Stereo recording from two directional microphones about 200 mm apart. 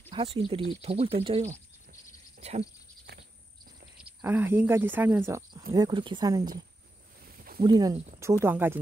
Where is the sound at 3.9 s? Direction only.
10° right (ahead or behind).